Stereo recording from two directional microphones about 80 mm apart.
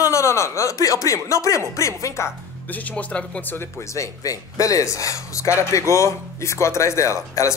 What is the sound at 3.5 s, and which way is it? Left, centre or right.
Speech, left.